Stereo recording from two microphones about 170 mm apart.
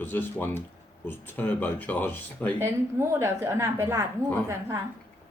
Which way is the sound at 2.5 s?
15° right (ahead or behind).